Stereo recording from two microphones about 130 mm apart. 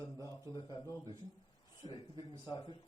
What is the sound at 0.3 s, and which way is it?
A man's voice, 30° left (ahead or behind).